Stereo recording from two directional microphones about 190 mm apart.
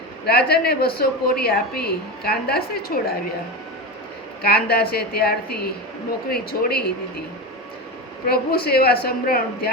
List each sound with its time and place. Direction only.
0.3 s a woman's voice: 55° left (ahead or behind)
4.4 s a woman's voice: 55° left (ahead or behind)
8.3 s a woman's voice: 55° left (ahead or behind)